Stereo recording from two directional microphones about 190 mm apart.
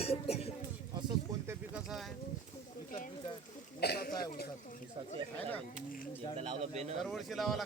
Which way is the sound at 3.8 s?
55° left (ahead or behind).